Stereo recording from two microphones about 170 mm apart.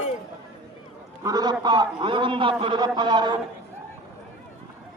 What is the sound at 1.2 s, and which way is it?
A man's voice, 25° right (ahead or behind).